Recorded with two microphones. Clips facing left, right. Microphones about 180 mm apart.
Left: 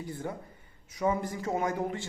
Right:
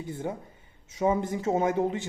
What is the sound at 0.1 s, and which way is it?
A man's voice, 25° right (ahead or behind).